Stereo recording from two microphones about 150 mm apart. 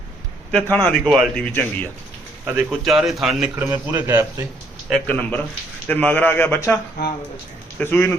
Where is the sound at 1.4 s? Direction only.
10° left (ahead or behind).